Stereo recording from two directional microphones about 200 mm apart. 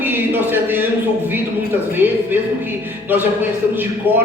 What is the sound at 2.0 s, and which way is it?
Speech, 10° right (ahead or behind).